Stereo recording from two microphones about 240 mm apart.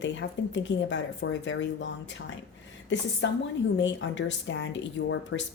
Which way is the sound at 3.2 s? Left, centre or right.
Left.